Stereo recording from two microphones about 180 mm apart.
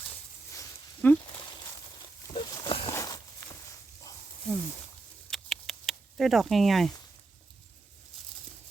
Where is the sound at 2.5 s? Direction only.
30° left (ahead or behind).